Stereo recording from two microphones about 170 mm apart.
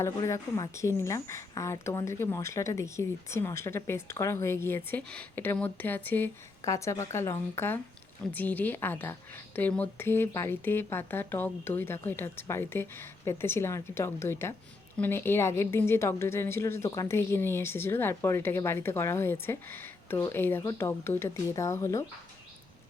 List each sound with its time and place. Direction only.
0.0 s a woman's voice: 20° left (ahead or behind)